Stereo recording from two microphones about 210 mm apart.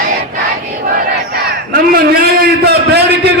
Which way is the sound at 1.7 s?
45° right (ahead or behind).